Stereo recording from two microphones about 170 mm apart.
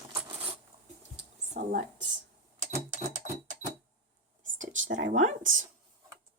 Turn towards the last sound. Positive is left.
turn(degrees=-50)  # may be behind; listen again after turning